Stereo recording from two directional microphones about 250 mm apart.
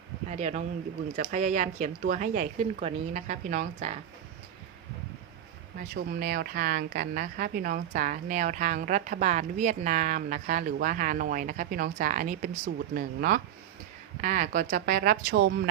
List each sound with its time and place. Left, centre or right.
0.3 s speech: right
5.9 s a woman's voice: right